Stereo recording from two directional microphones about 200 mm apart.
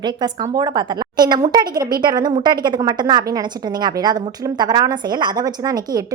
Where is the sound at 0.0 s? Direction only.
20° right (ahead or behind).